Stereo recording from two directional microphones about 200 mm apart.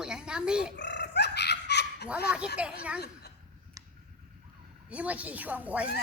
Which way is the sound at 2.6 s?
5° right (ahead or behind).